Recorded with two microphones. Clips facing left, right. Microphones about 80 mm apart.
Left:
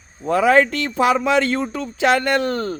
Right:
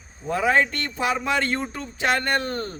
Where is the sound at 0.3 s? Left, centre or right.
Left.